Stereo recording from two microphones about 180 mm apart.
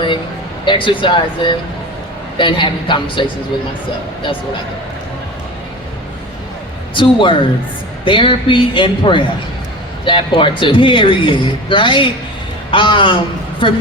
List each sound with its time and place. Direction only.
0.6 s speech: 25° left (ahead or behind)
6.9 s speech: 30° left (ahead or behind)